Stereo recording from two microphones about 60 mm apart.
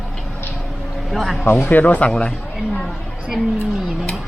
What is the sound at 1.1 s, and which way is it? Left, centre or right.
Speech, centre.